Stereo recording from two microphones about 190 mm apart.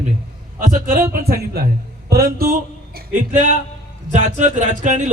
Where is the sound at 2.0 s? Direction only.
55° right (ahead or behind).